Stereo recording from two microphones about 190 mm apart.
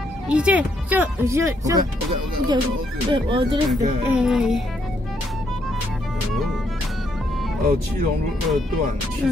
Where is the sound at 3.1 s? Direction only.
25° right (ahead or behind).